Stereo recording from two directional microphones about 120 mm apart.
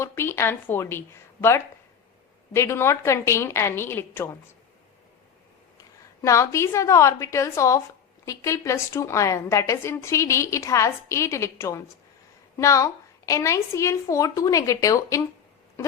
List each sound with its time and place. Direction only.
0.0 s a woman's voice: 20° left (ahead or behind)
6.2 s a woman's voice: 25° left (ahead or behind)